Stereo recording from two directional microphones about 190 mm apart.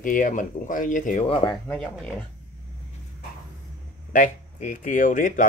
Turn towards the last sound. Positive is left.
turn(degrees=45)  # may be behind; listen again after turning